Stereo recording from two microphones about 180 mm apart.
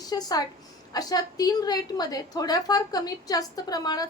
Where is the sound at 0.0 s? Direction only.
20° left (ahead or behind).